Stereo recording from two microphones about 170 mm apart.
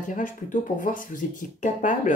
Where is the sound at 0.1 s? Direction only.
50° left (ahead or behind).